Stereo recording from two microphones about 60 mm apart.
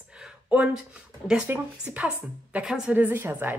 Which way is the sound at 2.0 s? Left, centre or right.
Centre.